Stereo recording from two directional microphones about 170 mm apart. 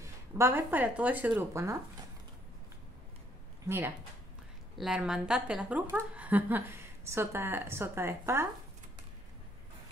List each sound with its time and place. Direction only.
0.0 s speech: 15° right (ahead or behind)
3.6 s a woman's voice: 10° right (ahead or behind)